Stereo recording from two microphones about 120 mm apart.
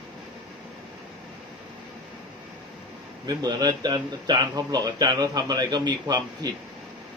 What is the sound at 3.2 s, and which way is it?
A man's voice, 35° right (ahead or behind).